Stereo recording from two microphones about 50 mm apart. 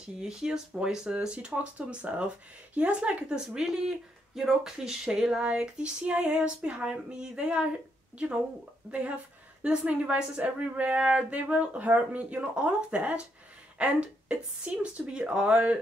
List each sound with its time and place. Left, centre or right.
0.2 s speech: centre
3.3 s speech: centre
9.6 s speech: right